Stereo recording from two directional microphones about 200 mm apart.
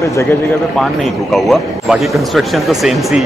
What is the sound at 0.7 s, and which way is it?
Speech, centre (ahead or behind).